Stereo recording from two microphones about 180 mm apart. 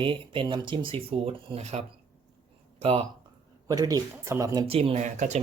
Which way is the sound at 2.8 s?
30° right (ahead or behind).